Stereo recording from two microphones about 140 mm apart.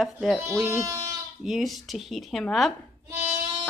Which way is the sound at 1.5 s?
Centre (ahead or behind).